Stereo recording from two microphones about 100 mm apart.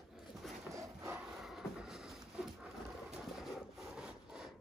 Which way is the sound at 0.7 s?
25° right (ahead or behind).